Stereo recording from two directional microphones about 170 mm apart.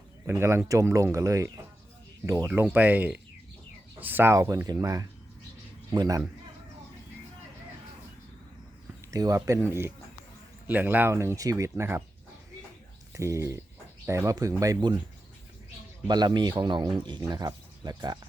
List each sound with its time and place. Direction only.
0.3 s speech: 15° right (ahead or behind)
9.1 s speech: 20° right (ahead or behind)
13.1 s speech: 15° right (ahead or behind)
16.0 s speech: 25° right (ahead or behind)